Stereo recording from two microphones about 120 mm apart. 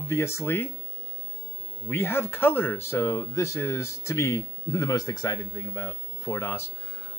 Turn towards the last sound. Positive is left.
turn(degrees=20)  # may be behind; listen again after turning